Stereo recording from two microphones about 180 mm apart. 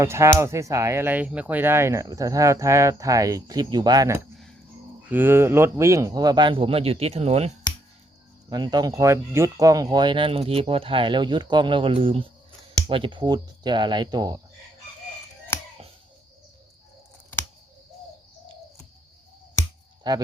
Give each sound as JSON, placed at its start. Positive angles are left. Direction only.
{"t": 0.0, "sound": "speech", "side_deg": -15}
{"t": 8.4, "sound": "speech", "side_deg": -25}
{"t": 15.5, "sound": "a sound", "side_deg": 15}
{"t": 20.1, "sound": "speech", "side_deg": -25}